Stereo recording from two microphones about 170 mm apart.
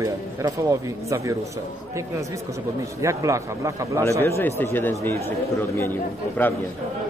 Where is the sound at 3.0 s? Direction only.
20° right (ahead or behind).